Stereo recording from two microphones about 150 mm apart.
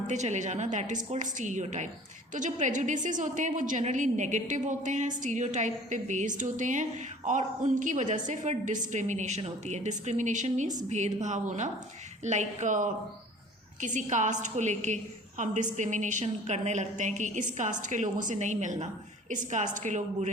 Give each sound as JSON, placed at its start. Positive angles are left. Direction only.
{"t": 0.1, "sound": "a woman's voice", "side_deg": -50}